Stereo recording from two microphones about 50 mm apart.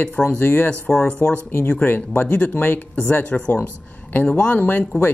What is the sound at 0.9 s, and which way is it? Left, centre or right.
Speech, centre.